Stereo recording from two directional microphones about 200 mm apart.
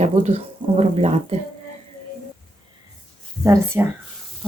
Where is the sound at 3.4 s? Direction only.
15° right (ahead or behind).